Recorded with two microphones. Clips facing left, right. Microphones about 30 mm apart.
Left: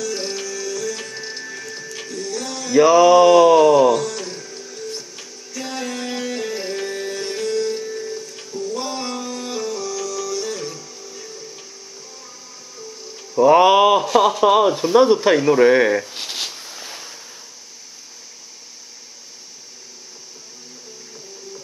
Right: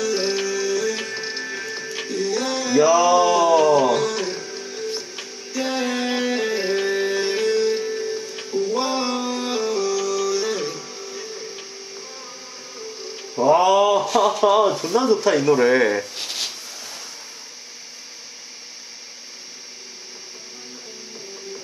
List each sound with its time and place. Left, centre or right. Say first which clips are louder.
0.0 s music: right 4 dB; centre
2.8 s a sound: left 5 dB; centre
3.7 s music: left 3 dB; centre
12.7 s music: right 2 dB; right
13.4 s mantra: left 4 dB; left
14.4 s speech: even; centre
15.3 s a sound: left 3 dB; centre